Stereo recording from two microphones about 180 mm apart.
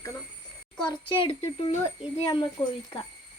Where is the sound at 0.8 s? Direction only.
30° left (ahead or behind).